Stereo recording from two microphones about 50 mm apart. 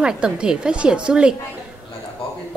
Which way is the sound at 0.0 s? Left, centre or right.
Centre.